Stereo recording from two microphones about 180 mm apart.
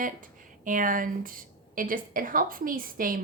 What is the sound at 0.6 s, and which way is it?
A woman's voice, 50° right (ahead or behind).